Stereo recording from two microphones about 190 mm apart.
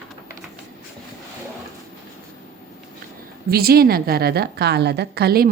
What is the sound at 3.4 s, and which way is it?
A woman's voice, 55° right (ahead or behind).